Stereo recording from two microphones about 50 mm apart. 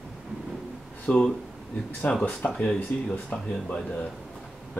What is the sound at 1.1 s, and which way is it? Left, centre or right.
Speech, left.